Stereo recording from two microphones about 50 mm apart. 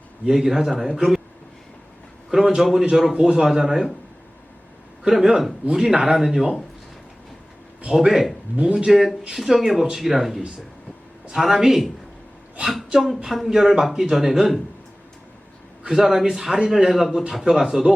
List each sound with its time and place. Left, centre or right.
0.3 s a man's voice: centre
2.6 s a man's voice: centre
5.0 s a man's voice: centre
7.9 s a man's voice: centre
8.6 s a man's voice: centre
8.9 s speech: centre
12.9 s speech: centre
15.9 s a man's voice: centre